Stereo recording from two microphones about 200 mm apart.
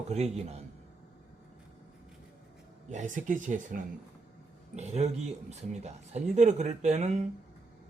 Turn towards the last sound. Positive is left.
turn(degrees=-35)  # may be behind; listen again after turning